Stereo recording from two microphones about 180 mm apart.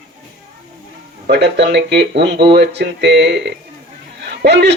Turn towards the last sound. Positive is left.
turn(degrees=-70)  # may be behind; listen again after turning